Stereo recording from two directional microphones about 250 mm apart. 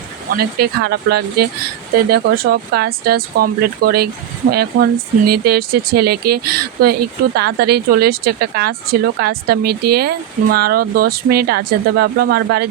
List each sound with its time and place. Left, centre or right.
0.3 s speech: right